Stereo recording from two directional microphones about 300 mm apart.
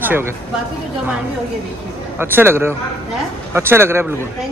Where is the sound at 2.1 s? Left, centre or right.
Centre.